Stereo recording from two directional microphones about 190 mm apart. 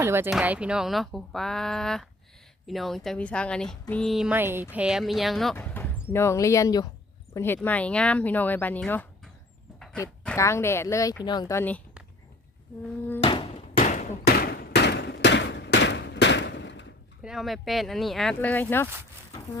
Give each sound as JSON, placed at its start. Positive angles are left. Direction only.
{"t": 0.0, "sound": "a woman's voice", "side_deg": -15}
{"t": 10.3, "sound": "speech", "side_deg": 15}
{"t": 13.2, "sound": "hammer", "side_deg": 30}
{"t": 13.7, "sound": "a sound", "side_deg": 40}
{"t": 14.3, "sound": "a sound", "side_deg": 55}
{"t": 17.2, "sound": "a woman's voice", "side_deg": 0}